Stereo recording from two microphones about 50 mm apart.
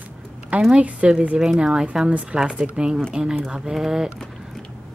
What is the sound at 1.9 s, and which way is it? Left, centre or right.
Speech, centre.